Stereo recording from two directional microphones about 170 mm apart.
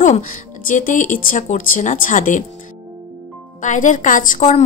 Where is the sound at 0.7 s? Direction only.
50° left (ahead or behind).